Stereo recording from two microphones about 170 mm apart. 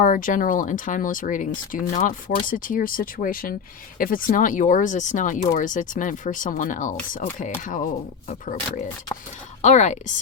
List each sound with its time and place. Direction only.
0.0 s speech: 50° left (ahead or behind)